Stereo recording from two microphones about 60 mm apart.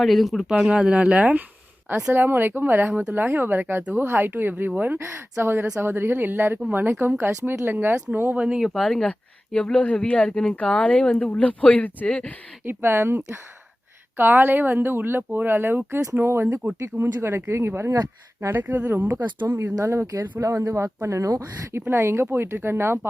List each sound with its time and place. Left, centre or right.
0.0 s speech: centre
0.4 s speech: centre
2.1 s speech: right
5.4 s speech: right
8.4 s speech: centre
8.7 s speech: centre
12.6 s speech: right
21.7 s speech: right